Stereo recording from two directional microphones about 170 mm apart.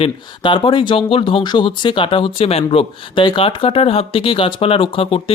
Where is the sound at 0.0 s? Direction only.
30° left (ahead or behind).